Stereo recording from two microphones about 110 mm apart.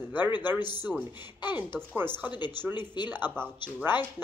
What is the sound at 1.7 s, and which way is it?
Speech, 20° right (ahead or behind).